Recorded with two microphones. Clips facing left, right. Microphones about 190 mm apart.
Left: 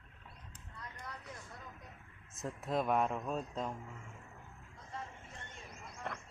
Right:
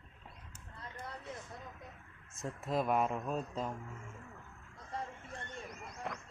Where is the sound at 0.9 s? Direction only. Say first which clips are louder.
Right 5 dB; 25° right (ahead or behind).